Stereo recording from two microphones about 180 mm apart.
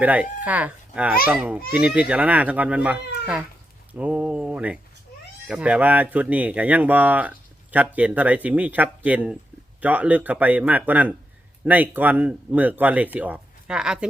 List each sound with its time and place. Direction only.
0.0 s speech: 10° right (ahead or behind)